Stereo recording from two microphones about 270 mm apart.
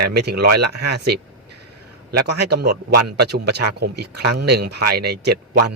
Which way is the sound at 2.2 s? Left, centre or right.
Right.